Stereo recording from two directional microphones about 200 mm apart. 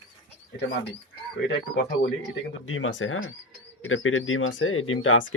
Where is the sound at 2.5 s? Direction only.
80° left.